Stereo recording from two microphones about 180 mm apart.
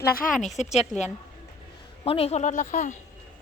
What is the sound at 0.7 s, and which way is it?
Speech, centre (ahead or behind).